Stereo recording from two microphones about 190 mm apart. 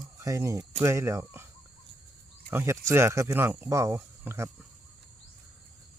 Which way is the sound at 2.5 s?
15° right (ahead or behind).